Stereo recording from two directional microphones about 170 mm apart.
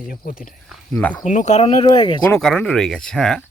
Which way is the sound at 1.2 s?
45° left (ahead or behind).